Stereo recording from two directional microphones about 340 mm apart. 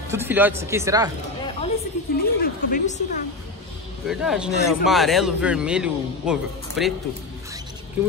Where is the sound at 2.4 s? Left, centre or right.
Left.